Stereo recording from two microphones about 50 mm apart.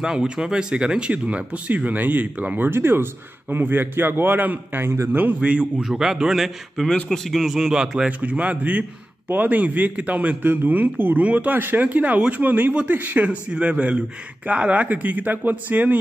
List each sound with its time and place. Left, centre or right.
0.0 s a man's voice: centre; by 4.8 s right
4.8 s a man's voice: right
5.4 s speech: right
5.8 s a man's voice: centre
8.2 s speech: right